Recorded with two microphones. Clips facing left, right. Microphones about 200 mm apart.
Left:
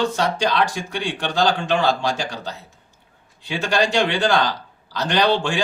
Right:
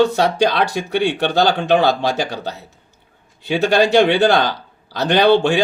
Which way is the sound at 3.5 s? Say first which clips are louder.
Right 7 dB; 60° right (ahead or behind).